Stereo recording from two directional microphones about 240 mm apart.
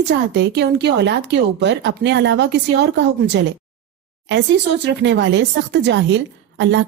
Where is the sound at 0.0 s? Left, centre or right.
Right.